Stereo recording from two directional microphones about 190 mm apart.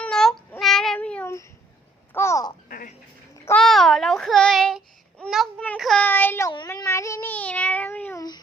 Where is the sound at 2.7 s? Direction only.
50° left (ahead or behind).